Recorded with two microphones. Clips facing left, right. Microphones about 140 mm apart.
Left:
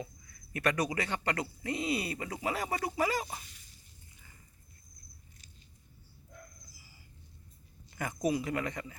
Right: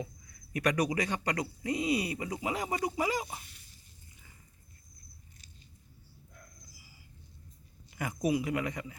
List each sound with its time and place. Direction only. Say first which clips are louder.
0.5 s speech: right 2 dB; 15° right (ahead or behind)
7.9 s speech: right 1 dB; 10° right (ahead or behind)